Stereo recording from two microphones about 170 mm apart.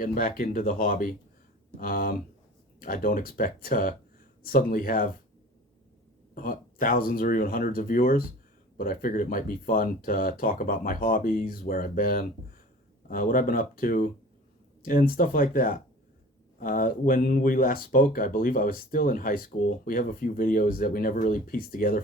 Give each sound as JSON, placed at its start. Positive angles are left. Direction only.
{"t": 0.0, "sound": "speech", "side_deg": 55}
{"t": 6.3, "sound": "speech", "side_deg": 55}